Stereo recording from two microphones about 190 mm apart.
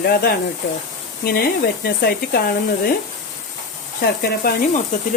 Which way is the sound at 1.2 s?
50° left (ahead or behind).